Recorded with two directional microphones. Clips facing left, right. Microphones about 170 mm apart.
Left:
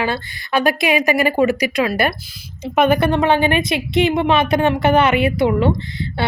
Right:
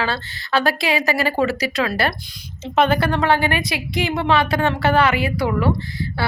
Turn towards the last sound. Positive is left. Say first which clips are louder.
# left 2 dB
turn(degrees=20)  # may be behind; listen again after turning